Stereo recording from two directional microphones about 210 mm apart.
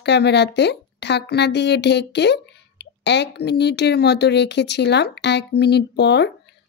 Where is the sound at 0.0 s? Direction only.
55° left (ahead or behind).